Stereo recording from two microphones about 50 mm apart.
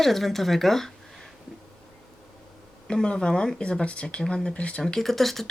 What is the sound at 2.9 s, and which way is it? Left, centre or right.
A woman's voice, centre.